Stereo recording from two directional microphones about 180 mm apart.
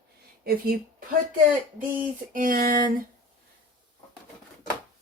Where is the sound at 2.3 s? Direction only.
50° right (ahead or behind).